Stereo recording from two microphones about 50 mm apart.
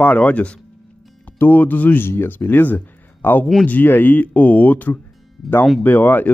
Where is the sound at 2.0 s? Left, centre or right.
Left.